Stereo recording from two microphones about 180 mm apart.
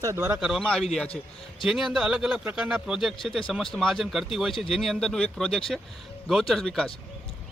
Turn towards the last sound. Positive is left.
turn(degrees=5)  # may be behind; listen again after turning